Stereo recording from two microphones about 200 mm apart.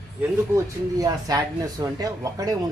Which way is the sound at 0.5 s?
15° right (ahead or behind).